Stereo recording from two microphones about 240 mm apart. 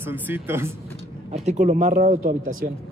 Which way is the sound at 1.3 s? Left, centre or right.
Right.